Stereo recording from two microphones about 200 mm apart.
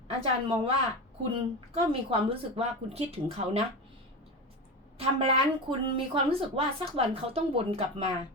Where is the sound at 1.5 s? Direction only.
25° right (ahead or behind).